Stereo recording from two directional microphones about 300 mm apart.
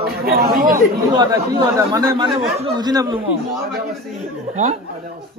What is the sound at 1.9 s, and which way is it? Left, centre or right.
Speech, centre.